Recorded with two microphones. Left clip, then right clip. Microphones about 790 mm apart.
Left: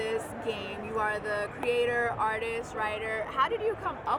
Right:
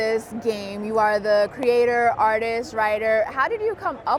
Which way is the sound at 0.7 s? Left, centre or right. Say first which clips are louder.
Right 12 dB; right.